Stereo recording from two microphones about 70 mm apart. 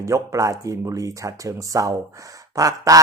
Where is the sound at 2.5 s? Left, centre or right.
Right.